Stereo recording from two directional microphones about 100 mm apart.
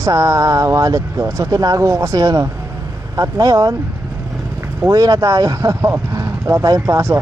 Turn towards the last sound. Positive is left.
turn(degrees=-30)  # may be behind; listen again after turning